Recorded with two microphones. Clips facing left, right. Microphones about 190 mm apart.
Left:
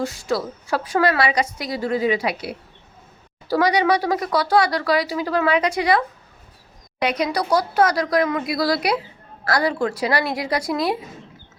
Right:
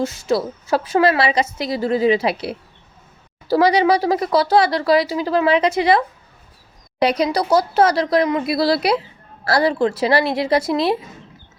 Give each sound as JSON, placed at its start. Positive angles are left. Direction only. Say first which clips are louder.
{"t": 0.3, "sound": "a woman's voice", "louder": "right 5 dB", "side_deg": -25}
{"t": 7.0, "sound": "a woman's voice", "louder": "right 4 dB", "side_deg": -35}